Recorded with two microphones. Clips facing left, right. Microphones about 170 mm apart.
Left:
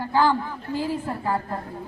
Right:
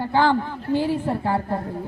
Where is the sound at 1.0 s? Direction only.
30° right (ahead or behind).